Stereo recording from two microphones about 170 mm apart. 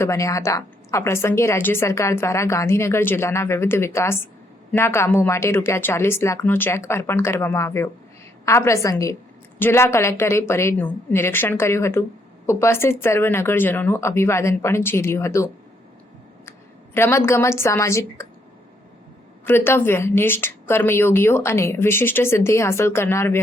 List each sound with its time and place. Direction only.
0.0 s a woman's voice: 15° left (ahead or behind)
16.5 s a woman's voice: 15° left (ahead or behind)
19.5 s a woman's voice: 15° left (ahead or behind)